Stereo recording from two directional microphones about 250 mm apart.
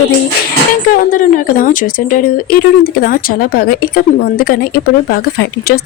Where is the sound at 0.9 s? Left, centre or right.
Left.